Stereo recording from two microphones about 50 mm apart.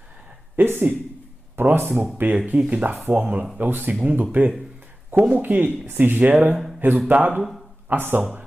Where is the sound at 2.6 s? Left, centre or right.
Right.